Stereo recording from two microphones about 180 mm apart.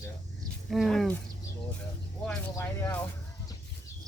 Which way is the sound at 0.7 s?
Centre (ahead or behind).